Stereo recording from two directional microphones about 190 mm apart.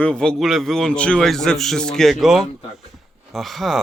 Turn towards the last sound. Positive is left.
turn(degrees=0)  # may be behind; listen again after turning